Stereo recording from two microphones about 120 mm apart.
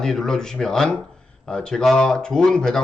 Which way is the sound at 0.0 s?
5° left (ahead or behind).